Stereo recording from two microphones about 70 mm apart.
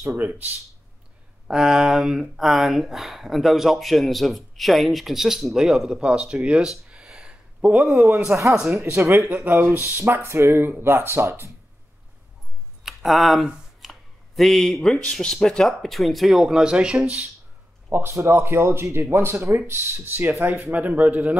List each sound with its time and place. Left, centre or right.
1.5 s speech: centre
8.3 s a man's voice: right
8.7 s speech: right
12.8 s speech: centre
13.7 s a sound: centre
14.8 s speech: centre
17.8 s speech: right